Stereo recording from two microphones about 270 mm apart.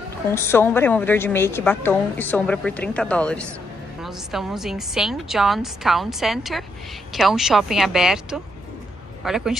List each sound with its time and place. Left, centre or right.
0.3 s a woman's voice: centre